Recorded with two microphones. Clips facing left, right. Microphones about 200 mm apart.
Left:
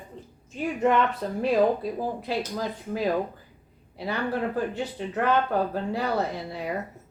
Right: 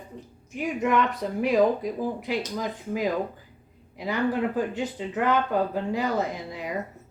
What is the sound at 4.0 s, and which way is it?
Speech, 15° right (ahead or behind).